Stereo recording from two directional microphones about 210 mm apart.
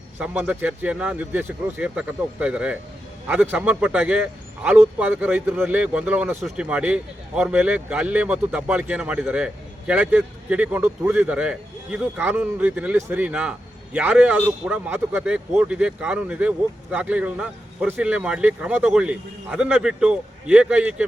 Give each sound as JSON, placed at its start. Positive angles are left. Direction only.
{"t": 0.2, "sound": "a man's voice", "side_deg": -5}